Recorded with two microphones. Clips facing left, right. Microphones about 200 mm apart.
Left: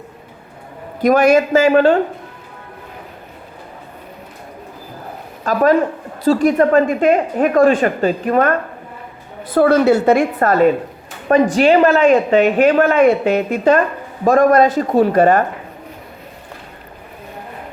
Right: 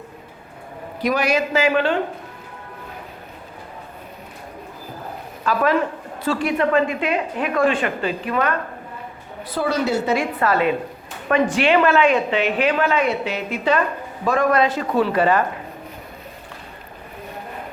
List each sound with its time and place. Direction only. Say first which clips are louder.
1.0 s speech: left 9 dB; 50° left (ahead or behind)
5.4 s speech: left 6 dB; 40° left (ahead or behind)